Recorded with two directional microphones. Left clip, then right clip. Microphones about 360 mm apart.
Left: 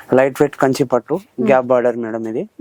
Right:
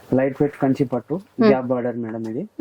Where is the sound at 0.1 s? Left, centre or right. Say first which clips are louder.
Left 7 dB; centre.